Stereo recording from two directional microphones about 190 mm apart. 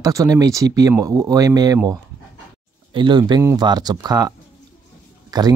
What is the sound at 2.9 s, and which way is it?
Speech, 25° right (ahead or behind).